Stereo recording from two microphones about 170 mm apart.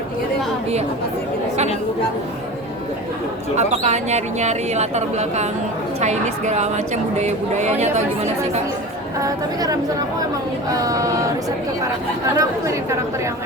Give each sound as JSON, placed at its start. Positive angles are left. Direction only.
{"t": 3.6, "sound": "a woman's voice", "side_deg": -40}
{"t": 9.2, "sound": "speech", "side_deg": -20}
{"t": 12.4, "sound": "speech", "side_deg": -20}